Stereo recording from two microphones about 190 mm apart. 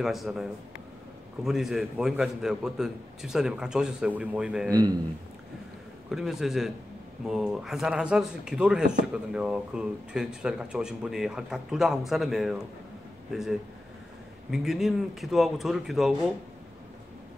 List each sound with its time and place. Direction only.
0.0 s speech: centre (ahead or behind)
4.6 s a man's voice: 20° right (ahead or behind)
6.0 s speech: centre (ahead or behind)